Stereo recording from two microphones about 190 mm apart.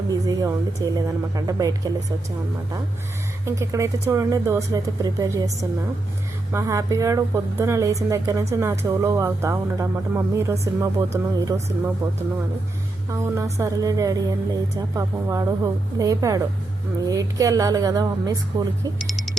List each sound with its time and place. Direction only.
0.1 s a woman's voice: 15° right (ahead or behind)
3.4 s a woman's voice: 15° right (ahead or behind)
6.5 s a woman's voice: 15° right (ahead or behind)
13.1 s a woman's voice: 15° right (ahead or behind)